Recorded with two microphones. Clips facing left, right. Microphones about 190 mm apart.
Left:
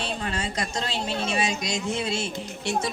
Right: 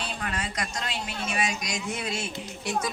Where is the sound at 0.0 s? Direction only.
25° left (ahead or behind).